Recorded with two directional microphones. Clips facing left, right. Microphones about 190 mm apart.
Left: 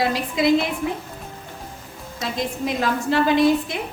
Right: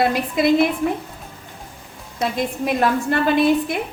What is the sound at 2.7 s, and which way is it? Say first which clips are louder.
A woman's voice: right 3 dB; 55° right (ahead or behind).